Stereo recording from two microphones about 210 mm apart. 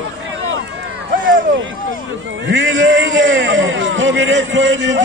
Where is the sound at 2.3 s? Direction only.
65° right (ahead or behind).